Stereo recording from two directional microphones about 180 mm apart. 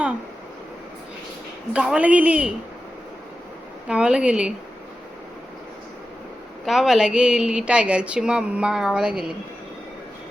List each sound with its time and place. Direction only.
1.7 s a man's voice: 5° right (ahead or behind)
3.8 s speech: 5° right (ahead or behind)
6.7 s speech: centre (ahead or behind)